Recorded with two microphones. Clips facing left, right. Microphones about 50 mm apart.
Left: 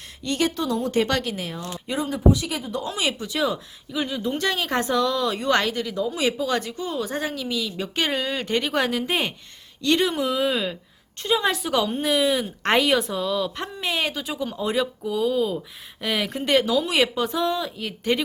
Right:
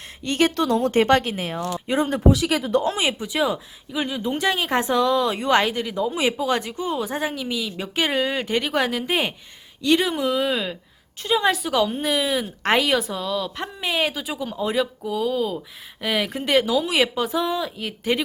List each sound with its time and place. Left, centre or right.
0.2 s speech: right
0.5 s speech: right
2.0 s speech: right
2.3 s speech: right
2.8 s speech: right
3.2 s a woman's voice: centre